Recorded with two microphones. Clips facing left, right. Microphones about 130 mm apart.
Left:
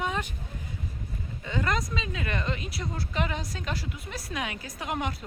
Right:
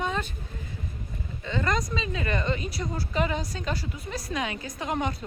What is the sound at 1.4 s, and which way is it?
A woman's voice, 10° left (ahead or behind).